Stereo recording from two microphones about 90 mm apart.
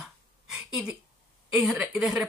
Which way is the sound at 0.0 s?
5° right (ahead or behind).